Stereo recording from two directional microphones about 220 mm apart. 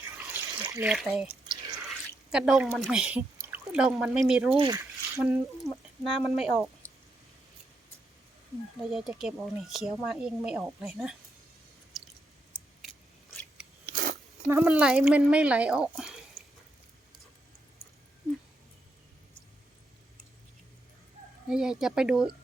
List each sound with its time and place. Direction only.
0.0 s water: 10° right (ahead or behind)
0.5 s a sound: 20° right (ahead or behind)
0.9 s speech: centre (ahead or behind)
1.5 s drip: 20° right (ahead or behind)
2.3 s speech: 5° right (ahead or behind)
4.5 s speech: 20° right (ahead or behind)
4.8 s speech: 5° right (ahead or behind)
8.8 s speech: centre (ahead or behind)
12.8 s chewing: 5° right (ahead or behind)
13.9 s a sound: 40° right (ahead or behind)
14.4 s speech: 5° right (ahead or behind)
21.5 s speech: 5° right (ahead or behind)